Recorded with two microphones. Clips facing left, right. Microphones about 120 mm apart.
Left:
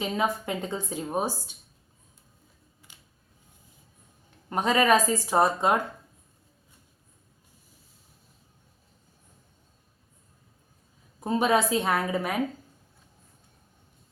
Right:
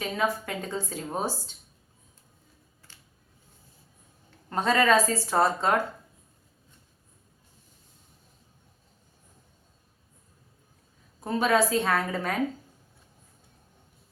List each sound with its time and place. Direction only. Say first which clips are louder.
0.0 s a woman's voice: left 1 dB; 20° left (ahead or behind)
2.9 s a sound: even; 15° left (ahead or behind)
4.4 s a woman's voice: even; 15° left (ahead or behind)
11.2 s a woman's voice: even; 20° left (ahead or behind)